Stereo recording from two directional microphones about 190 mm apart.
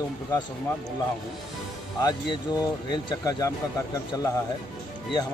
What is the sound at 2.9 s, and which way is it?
Speech, 20° left (ahead or behind).